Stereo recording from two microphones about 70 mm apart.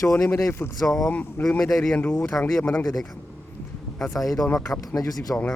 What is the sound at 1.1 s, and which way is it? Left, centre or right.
Speech, left.